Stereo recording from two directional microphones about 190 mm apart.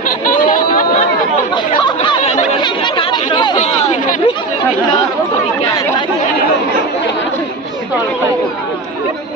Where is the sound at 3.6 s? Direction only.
40° left (ahead or behind).